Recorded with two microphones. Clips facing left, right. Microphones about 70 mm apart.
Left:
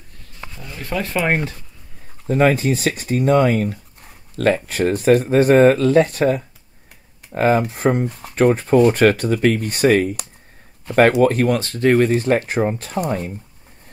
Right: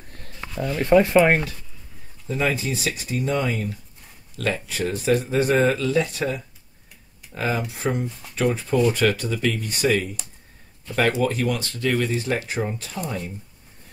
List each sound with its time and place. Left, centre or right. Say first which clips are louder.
0.2 s a sound: right 8 dB; right
0.7 s speech: right 8 dB; right
2.2 s speech: left 8 dB; left